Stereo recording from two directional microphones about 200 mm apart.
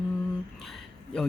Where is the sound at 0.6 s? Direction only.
Centre (ahead or behind).